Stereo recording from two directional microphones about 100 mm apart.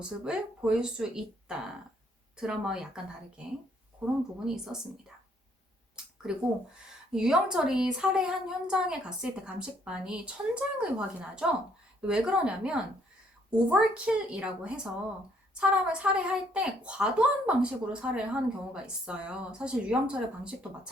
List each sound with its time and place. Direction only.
0.0 s speech: 10° right (ahead or behind)
6.3 s speech: 5° right (ahead or behind)